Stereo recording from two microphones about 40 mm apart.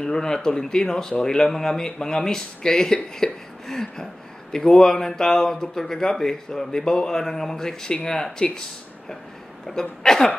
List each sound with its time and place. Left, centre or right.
0.0 s speech: centre
9.8 s speech: centre